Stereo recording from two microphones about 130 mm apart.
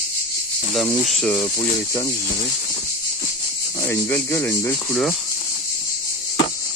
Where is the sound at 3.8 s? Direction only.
20° left (ahead or behind).